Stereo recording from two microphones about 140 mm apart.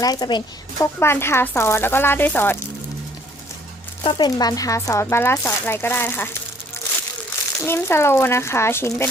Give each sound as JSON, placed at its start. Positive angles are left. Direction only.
{"t": 0.0, "sound": "speech", "side_deg": 30}
{"t": 0.9, "sound": "speech", "side_deg": 15}
{"t": 4.0, "sound": "speech", "side_deg": 40}
{"t": 4.4, "sound": "speech", "side_deg": 25}
{"t": 6.8, "sound": "crushing", "side_deg": 20}
{"t": 7.6, "sound": "speech", "side_deg": 20}